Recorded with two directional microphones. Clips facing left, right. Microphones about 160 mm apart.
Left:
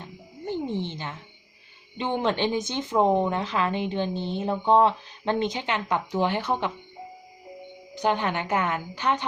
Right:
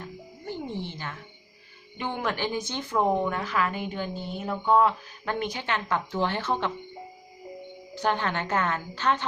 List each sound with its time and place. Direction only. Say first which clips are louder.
0.0 s wild animals: left 2 dB; 20° left (ahead or behind)
2.0 s speech: left 5 dB; 25° left (ahead or behind)
7.9 s a woman's voice: left 2 dB; 15° left (ahead or behind)